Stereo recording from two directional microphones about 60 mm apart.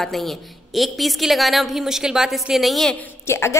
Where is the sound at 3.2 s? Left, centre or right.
Left.